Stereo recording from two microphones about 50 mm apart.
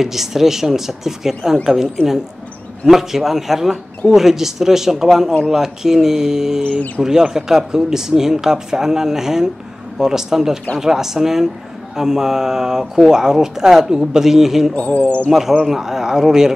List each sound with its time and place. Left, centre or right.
0.0 s speech: centre
2.9 s a man's voice: centre
14.8 s speech: left
15.6 s speech: centre